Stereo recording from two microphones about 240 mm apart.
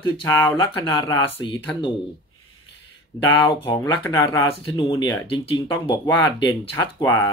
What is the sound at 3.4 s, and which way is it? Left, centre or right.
Speech, centre.